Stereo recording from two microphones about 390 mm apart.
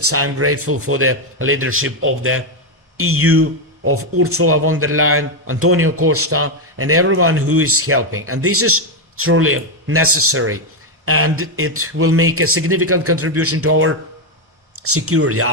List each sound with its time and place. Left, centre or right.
0.0 s a man's voice: right